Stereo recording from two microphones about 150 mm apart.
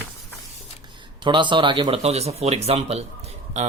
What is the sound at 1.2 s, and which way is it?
Speech, 30° right (ahead or behind).